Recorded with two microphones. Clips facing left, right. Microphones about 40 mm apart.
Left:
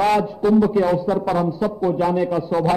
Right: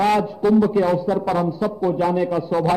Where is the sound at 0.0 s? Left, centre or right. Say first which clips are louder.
Even; centre.